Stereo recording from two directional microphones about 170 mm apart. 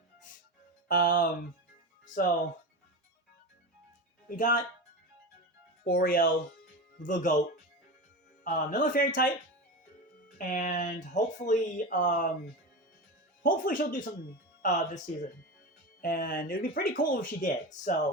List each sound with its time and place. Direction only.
0.9 s speech: 55° left (ahead or behind)
4.4 s speech: 50° left (ahead or behind)
5.8 s speech: 60° left (ahead or behind)
7.0 s speech: 50° left (ahead or behind)
8.4 s speech: 50° left (ahead or behind)
10.3 s speech: 50° left (ahead or behind)
13.4 s speech: 55° left (ahead or behind)
16.0 s speech: 55° left (ahead or behind)